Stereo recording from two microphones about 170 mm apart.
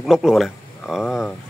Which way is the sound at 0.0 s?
Centre (ahead or behind).